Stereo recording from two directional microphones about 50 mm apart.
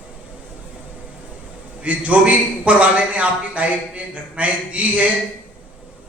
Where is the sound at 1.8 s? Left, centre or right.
Right.